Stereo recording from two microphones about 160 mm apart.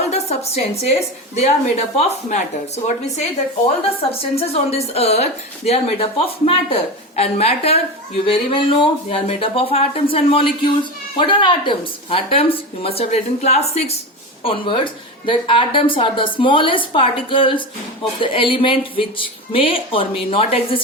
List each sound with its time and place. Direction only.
0.0 s a woman's voice: 45° left (ahead or behind)